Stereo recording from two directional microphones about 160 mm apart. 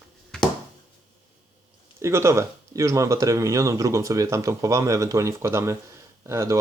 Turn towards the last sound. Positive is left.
turn(degrees=-20)  # may be behind; listen again after turning